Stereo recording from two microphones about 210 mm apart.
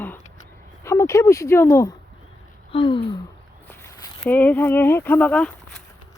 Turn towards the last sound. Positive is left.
turn(degrees=5)  # may be behind; listen again after turning